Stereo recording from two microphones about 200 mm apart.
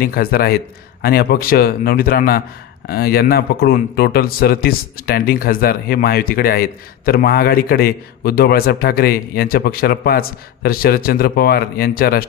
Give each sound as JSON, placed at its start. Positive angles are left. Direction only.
{"t": 0.0, "sound": "a man's voice", "side_deg": 50}